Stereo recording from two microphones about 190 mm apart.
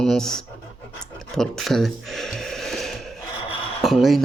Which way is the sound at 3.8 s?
Centre (ahead or behind).